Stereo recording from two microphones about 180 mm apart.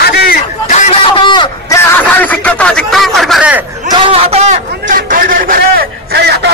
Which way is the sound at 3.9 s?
30° right (ahead or behind).